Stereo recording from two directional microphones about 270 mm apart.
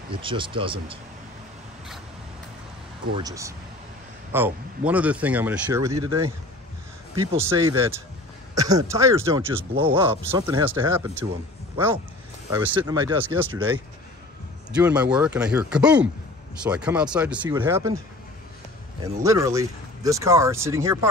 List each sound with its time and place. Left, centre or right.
0.1 s speech: centre
3.2 s speech: centre
7.3 s speech: centre
14.7 s speech: centre
19.2 s speech: centre